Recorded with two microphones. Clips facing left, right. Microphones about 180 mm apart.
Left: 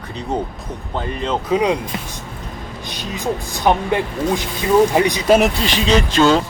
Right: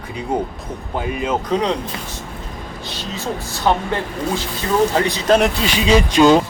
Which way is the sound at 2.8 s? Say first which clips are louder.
Left 3 dB; 15° left (ahead or behind).